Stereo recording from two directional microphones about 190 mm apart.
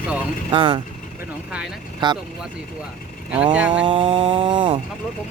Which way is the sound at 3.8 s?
25° right (ahead or behind).